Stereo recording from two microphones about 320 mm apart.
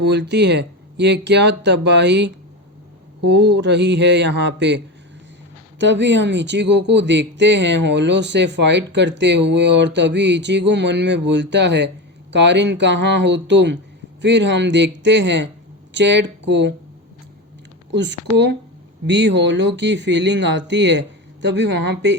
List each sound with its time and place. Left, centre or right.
0.0 s speech: right
5.8 s speech: right
17.9 s speech: right